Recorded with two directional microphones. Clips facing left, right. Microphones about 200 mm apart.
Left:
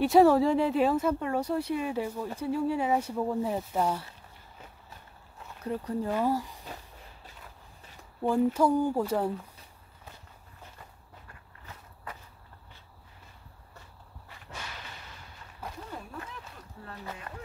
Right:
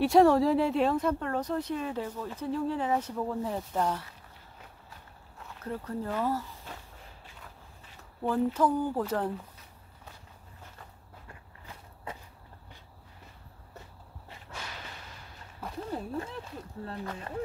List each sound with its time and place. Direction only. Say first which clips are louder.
0.0 s speech: left 1 dB; 5° left (ahead or behind)
5.6 s speech: left 3 dB; 15° left (ahead or behind)
8.5 s speech: left 2 dB; 10° left (ahead or behind)
11.6 s walk: right 2 dB; 25° right (ahead or behind)
15.9 s a sound: right 7 dB; 30° right (ahead or behind)